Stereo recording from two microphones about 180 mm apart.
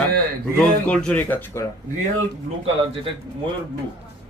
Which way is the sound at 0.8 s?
5° left (ahead or behind).